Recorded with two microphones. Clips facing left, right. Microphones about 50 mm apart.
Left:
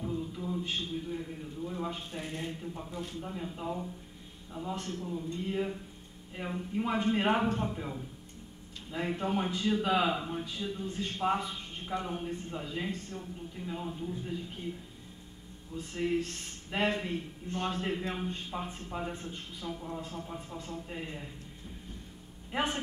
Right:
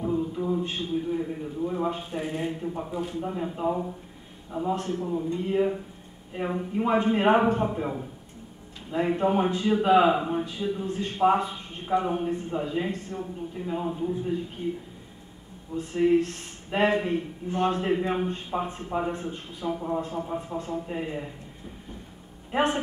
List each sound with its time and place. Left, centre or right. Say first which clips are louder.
0.0 s a sound: right 9 dB; right
0.3 s a man's voice: right 7 dB; right
5.0 s a man's voice: right 8 dB; right
5.4 s a man's voice: right 9 dB; centre
8.9 s a man's voice: right 9 dB; right
15.7 s a man's voice: right 10 dB; right
22.5 s speech: right 8 dB; centre